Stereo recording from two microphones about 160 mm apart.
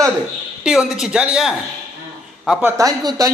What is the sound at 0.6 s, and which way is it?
A man's voice, 5° right (ahead or behind).